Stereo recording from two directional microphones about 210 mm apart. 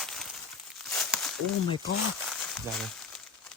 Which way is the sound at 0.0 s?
Centre (ahead or behind).